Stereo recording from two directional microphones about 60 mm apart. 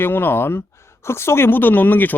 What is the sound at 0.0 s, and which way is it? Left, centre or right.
Speech, left.